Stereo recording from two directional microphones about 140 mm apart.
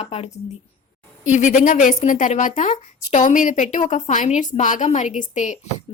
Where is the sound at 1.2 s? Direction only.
60° left (ahead or behind).